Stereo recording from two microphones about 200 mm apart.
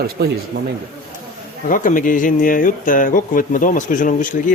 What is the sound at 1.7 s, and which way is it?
Speech, 40° left (ahead or behind).